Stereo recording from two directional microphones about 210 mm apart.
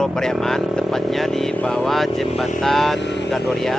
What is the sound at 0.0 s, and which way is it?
Speech, centre (ahead or behind).